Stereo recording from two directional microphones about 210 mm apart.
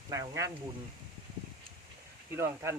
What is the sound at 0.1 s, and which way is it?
Speech, 15° right (ahead or behind).